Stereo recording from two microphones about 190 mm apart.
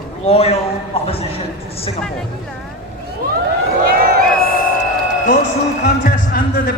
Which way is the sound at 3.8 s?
50° right (ahead or behind).